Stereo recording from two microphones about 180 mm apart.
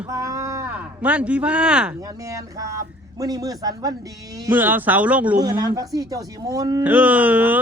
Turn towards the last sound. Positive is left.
turn(degrees=-10)  # may be behind; listen again after turning